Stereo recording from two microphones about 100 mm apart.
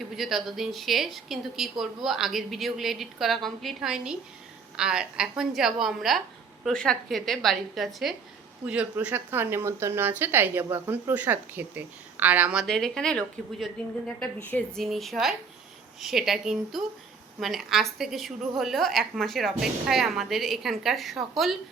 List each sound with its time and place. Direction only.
0.0 s a woman's voice: centre (ahead or behind)
8.6 s speech: 10° right (ahead or behind)
12.6 s a woman's voice: 5° left (ahead or behind)